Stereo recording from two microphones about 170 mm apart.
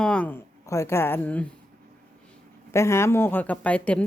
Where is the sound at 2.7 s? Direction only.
15° left (ahead or behind).